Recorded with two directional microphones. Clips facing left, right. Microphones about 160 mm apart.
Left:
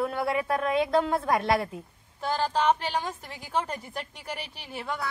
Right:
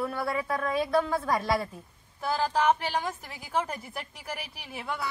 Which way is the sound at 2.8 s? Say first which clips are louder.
Even; 10° right (ahead or behind).